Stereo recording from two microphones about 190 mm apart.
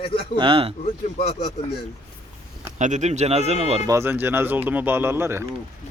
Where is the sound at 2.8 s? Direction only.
40° right (ahead or behind).